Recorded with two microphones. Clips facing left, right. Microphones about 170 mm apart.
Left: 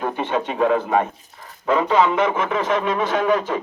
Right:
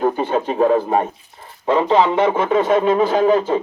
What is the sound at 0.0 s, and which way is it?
A man's voice, 35° right (ahead or behind).